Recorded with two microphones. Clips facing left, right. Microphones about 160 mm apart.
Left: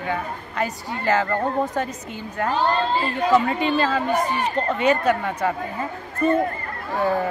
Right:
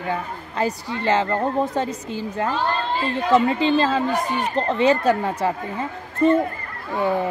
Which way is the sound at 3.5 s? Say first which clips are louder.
Right 2 dB; 30° right (ahead or behind).